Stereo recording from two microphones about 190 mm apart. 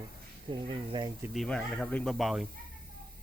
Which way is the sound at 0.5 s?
25° right (ahead or behind).